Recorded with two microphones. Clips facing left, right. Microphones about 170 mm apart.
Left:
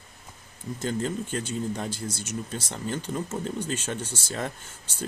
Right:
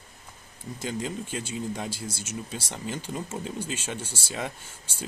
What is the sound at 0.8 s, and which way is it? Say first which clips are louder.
Speech: left 3 dB; 10° right (ahead or behind).